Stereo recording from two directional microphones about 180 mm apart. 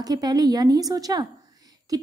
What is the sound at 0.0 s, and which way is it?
Speech, 20° right (ahead or behind).